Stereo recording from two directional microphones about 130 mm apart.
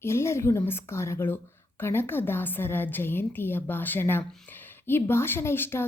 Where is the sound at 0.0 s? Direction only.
20° left (ahead or behind).